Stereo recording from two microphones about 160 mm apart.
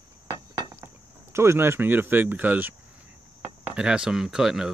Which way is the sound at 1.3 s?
15° right (ahead or behind).